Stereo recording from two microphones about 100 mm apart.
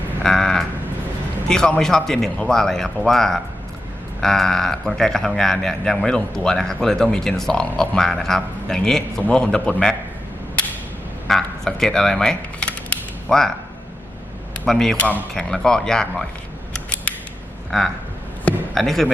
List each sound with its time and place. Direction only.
0.2 s sheep: 5° left (ahead or behind)
1.5 s a man's voice: 10° left (ahead or behind)
11.3 s a sound: 5° left (ahead or behind)
14.6 s a man's voice: 5° left (ahead or behind)
17.7 s a man's voice: centre (ahead or behind)